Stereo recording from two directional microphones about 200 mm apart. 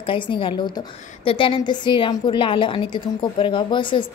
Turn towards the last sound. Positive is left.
turn(degrees=25)  # may be behind; listen again after turning